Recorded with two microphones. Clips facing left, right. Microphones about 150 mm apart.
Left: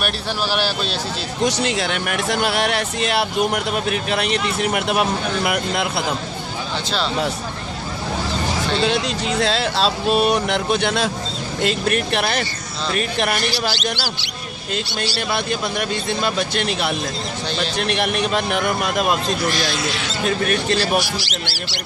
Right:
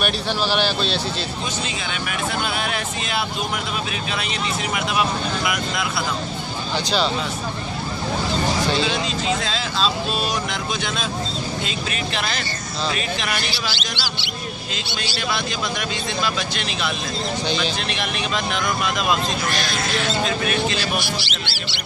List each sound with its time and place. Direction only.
0.5 s speech: 5° left (ahead or behind)
1.4 s speech: 75° left (ahead or behind); by 6.1 s 55° left (ahead or behind)
8.8 s speech: 65° left (ahead or behind); by 15.2 s 35° left (ahead or behind)
16.0 s speech: 55° left (ahead or behind)
19.5 s speech: 50° right (ahead or behind)
20.2 s speech: 50° left (ahead or behind)